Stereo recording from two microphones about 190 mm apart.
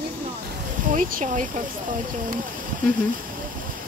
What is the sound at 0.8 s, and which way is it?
Speech, 45° right (ahead or behind).